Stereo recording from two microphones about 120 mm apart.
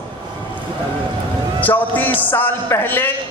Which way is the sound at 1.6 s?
15° left (ahead or behind).